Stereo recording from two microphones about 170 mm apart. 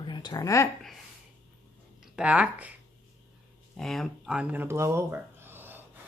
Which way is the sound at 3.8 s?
Centre (ahead or behind).